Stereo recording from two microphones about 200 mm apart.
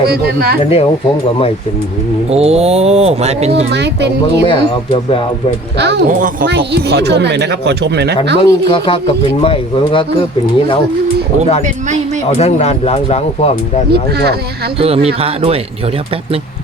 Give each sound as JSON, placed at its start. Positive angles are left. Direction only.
{"t": 0.1, "sound": "speech", "side_deg": -50}
{"t": 0.6, "sound": "speech", "side_deg": 30}
{"t": 2.3, "sound": "speech", "side_deg": -30}
{"t": 3.7, "sound": "speech", "side_deg": -60}
{"t": 4.4, "sound": "speech", "side_deg": 25}
{"t": 5.7, "sound": "speech", "side_deg": -60}
{"t": 8.4, "sound": "speech", "side_deg": 25}
{"t": 12.4, "sound": "speech", "side_deg": 35}
{"t": 13.9, "sound": "speech", "side_deg": -55}
{"t": 14.8, "sound": "speech", "side_deg": -30}